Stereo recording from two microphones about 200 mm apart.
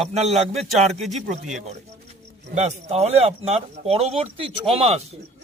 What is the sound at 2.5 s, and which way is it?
Speech, 35° right (ahead or behind).